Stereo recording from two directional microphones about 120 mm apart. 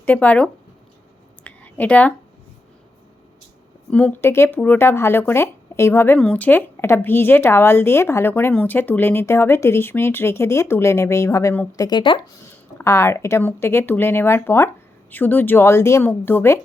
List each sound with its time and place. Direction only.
0.0 s a woman's voice: 15° left (ahead or behind)
1.5 s a sound: 10° left (ahead or behind)
3.8 s speech: 10° left (ahead or behind)
11.8 s speech: 35° left (ahead or behind)
12.8 s a woman's voice: 25° left (ahead or behind)